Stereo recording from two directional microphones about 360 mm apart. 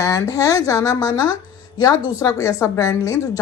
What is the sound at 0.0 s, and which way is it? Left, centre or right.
Speech, centre.